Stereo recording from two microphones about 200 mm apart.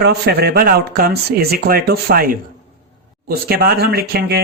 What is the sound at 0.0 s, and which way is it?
Speech, 55° right (ahead or behind).